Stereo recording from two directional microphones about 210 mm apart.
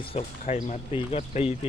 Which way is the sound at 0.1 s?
30° left (ahead or behind).